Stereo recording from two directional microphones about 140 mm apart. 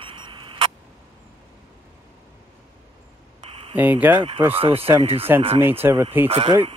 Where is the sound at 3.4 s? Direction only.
45° right (ahead or behind).